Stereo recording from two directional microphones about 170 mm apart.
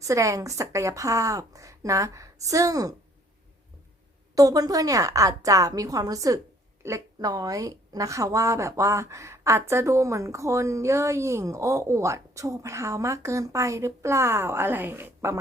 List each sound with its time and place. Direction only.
0.0 s a woman's voice: 20° right (ahead or behind)
4.4 s a woman's voice: 20° right (ahead or behind)